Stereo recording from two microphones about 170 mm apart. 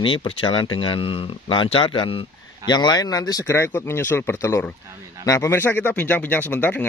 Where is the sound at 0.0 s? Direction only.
30° left (ahead or behind).